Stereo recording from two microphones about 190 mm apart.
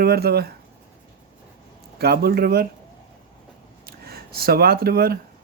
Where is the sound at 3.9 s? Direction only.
55° right (ahead or behind).